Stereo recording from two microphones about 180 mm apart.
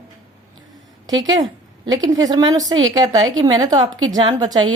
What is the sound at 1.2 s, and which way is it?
A woman's voice, 20° right (ahead or behind).